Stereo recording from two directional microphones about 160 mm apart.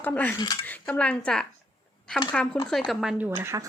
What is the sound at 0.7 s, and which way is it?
A woman's voice, 10° left (ahead or behind).